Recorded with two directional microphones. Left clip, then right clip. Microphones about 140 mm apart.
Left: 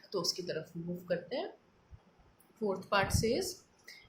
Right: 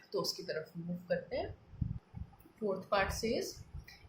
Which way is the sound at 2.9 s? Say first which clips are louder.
Left 3 dB; 40° left (ahead or behind).